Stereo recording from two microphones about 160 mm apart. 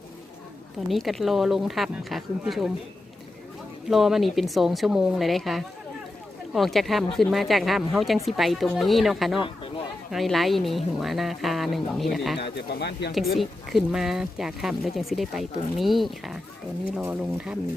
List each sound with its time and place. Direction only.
0.9 s speech: centre (ahead or behind)
3.8 s speech: centre (ahead or behind)
12.4 s speech: 90° left
13.3 s speech: centre (ahead or behind)